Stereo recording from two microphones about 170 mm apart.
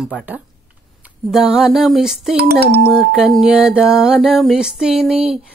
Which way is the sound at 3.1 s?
Centre (ahead or behind).